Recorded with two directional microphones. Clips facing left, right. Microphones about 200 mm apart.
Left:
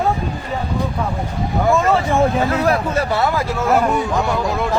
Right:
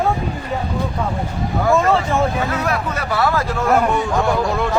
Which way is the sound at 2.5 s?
30° left (ahead or behind).